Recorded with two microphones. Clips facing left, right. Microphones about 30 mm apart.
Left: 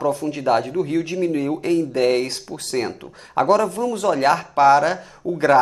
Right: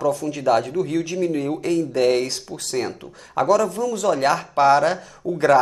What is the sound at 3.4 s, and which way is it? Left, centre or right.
Speech, left.